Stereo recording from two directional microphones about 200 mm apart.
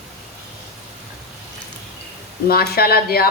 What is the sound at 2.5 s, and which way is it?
Speech, 50° left (ahead or behind).